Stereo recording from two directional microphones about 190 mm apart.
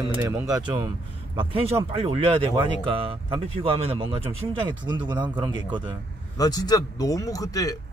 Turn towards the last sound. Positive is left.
turn(degrees=20)  # may be behind; listen again after turning